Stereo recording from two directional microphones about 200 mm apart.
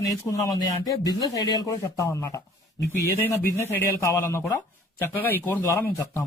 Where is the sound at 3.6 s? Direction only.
15° left (ahead or behind).